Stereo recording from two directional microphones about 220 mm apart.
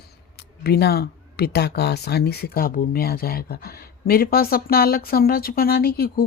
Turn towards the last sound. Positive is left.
turn(degrees=45)  # may be behind; listen again after turning